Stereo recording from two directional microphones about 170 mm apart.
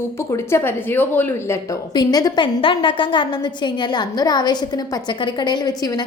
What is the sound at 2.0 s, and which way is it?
A woman's voice, 25° left (ahead or behind).